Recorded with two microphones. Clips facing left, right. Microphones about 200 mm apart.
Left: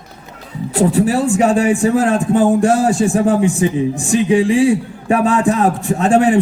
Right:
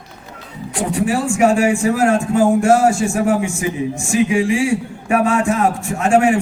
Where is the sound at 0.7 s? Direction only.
35° left (ahead or behind).